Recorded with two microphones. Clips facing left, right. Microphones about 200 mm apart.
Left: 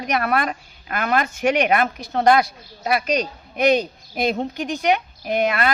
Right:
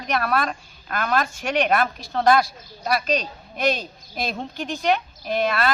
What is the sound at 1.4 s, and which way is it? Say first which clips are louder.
Speech: left 4 dB; 20° left (ahead or behind).